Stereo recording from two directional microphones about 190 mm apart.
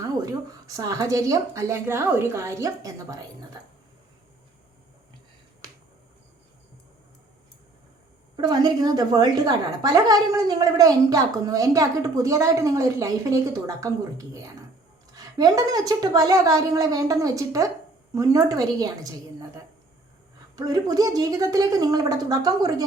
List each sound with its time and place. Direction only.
0.8 s a woman's voice: 15° right (ahead or behind)
8.4 s a woman's voice: 20° right (ahead or behind)